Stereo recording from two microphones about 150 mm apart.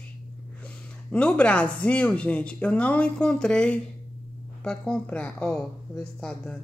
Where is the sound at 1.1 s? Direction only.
10° left (ahead or behind).